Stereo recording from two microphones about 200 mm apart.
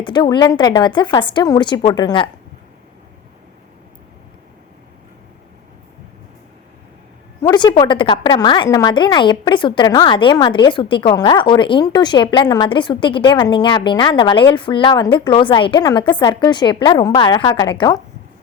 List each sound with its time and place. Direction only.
0.0 s a woman's voice: 20° left (ahead or behind)
7.4 s a woman's voice: 20° left (ahead or behind)